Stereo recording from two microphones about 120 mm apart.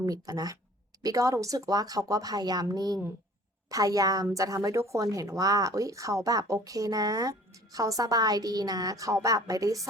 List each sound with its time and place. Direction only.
0.0 s a woman's voice: 30° right (ahead or behind)